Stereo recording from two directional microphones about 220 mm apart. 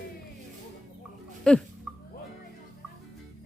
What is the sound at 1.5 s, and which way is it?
Speech, 5° left (ahead or behind).